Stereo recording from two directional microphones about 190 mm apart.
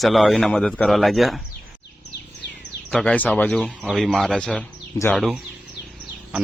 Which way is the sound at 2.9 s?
5° left (ahead or behind).